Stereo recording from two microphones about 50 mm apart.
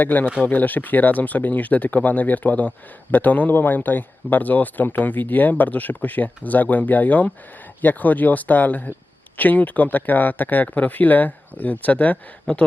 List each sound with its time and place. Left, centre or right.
0.0 s speech: left